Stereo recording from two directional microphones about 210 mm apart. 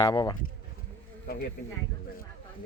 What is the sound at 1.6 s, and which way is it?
Speech, 50° left (ahead or behind).